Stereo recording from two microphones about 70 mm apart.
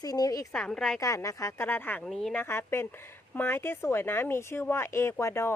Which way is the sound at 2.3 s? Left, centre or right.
Left.